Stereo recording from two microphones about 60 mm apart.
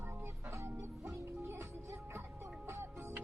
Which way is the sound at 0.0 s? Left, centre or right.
Right.